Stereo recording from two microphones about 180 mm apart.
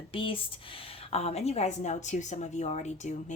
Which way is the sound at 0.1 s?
30° left (ahead or behind).